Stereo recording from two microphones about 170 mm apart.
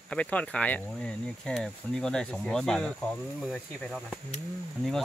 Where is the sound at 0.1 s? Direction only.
5° left (ahead or behind).